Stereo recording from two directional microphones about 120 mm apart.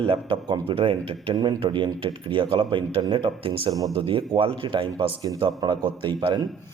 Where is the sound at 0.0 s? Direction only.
45° right (ahead or behind).